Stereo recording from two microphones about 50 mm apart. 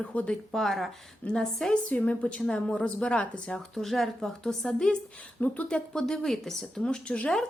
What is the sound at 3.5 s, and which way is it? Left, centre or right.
Speech, centre.